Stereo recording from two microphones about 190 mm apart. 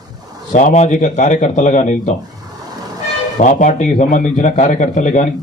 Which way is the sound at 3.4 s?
40° left (ahead or behind).